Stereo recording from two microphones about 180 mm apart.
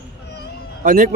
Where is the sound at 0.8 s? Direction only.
45° right (ahead or behind).